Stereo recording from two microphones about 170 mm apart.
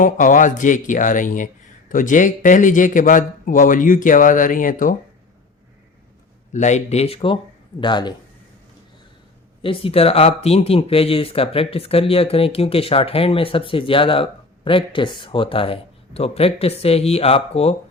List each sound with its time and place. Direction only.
0.0 s speech: 50° left (ahead or behind)
6.5 s speech: 45° left (ahead or behind); by 8.1 s 25° left (ahead or behind)
9.6 s speech: 35° left (ahead or behind)